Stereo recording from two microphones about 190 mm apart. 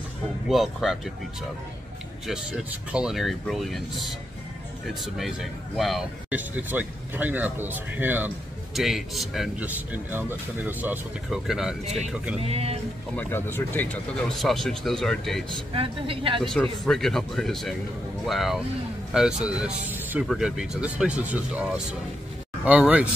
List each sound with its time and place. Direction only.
0.5 s speech: centre (ahead or behind)
2.2 s speech: 5° right (ahead or behind)
12.4 s speech: 30° right (ahead or behind)
13.1 s speech: 10° left (ahead or behind)
14.3 s speech: centre (ahead or behind)
15.7 s a woman's voice: 30° right (ahead or behind)
16.4 s speech: 5° left (ahead or behind)